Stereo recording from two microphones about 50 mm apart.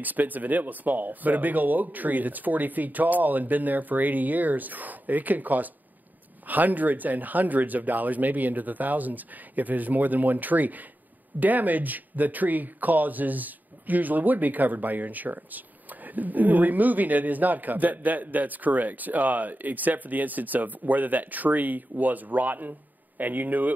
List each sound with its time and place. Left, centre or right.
0.0 s speech: right